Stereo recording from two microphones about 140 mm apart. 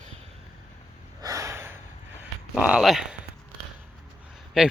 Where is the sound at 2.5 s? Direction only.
5° right (ahead or behind).